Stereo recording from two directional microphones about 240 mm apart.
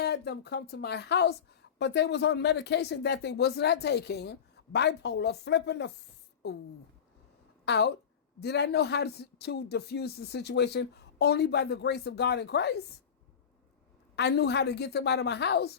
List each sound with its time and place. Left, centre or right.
0.0 s a woman's voice: left
7.6 s a woman's voice: left
14.2 s a woman's voice: left